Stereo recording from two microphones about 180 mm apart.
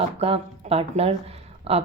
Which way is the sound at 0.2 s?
35° right (ahead or behind).